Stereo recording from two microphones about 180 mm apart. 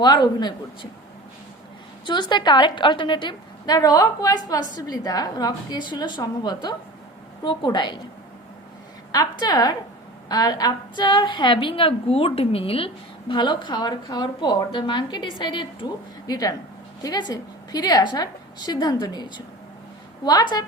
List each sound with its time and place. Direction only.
0.0 s a woman's voice: 25° left (ahead or behind)
2.0 s a woman's voice: 25° left (ahead or behind)
9.1 s a woman's voice: 20° left (ahead or behind)
20.2 s a woman's voice: 25° left (ahead or behind)